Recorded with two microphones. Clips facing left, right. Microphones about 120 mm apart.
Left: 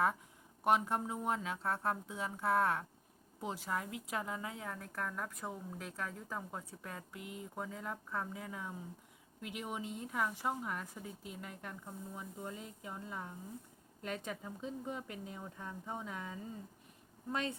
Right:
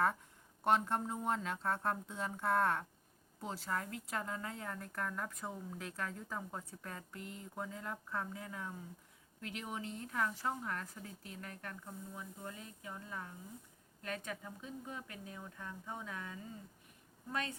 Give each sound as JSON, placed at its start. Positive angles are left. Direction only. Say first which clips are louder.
{"t": 0.6, "sound": "a woman's voice", "louder": "left 1 dB", "side_deg": 10}